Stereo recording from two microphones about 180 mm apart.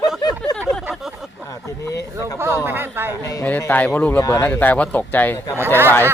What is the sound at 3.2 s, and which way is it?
Speech, 15° left (ahead or behind).